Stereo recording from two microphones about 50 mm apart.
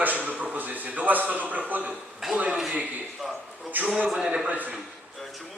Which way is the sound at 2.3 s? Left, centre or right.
Right.